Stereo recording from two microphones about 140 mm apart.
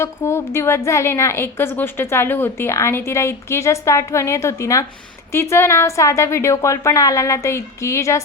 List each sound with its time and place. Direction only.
0.0 s a woman's voice: 20° left (ahead or behind)